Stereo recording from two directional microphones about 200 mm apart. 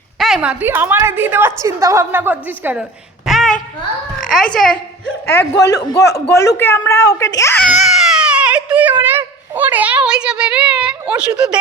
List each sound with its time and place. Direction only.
0.2 s a woman's voice: centre (ahead or behind)
3.2 s a sound: centre (ahead or behind)
4.2 s a child's voice: centre (ahead or behind)
7.7 s baby cry: centre (ahead or behind)
11.3 s a child's voice: 5° right (ahead or behind)